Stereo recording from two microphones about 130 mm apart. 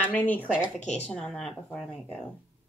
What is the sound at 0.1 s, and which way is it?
Speech, 15° left (ahead or behind).